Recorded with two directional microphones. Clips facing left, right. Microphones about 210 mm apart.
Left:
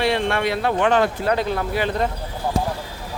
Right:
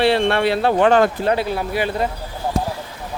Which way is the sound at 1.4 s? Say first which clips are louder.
Right 1 dB; 10° right (ahead or behind).